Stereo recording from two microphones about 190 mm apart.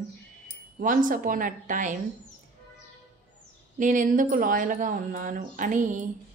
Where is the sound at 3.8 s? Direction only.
45° right (ahead or behind).